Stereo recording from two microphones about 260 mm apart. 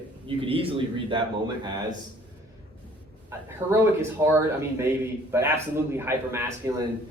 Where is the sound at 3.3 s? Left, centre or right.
Centre.